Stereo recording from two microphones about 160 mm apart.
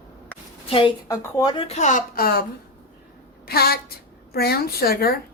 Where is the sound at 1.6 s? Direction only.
45° left (ahead or behind); by 2.4 s 70° left (ahead or behind).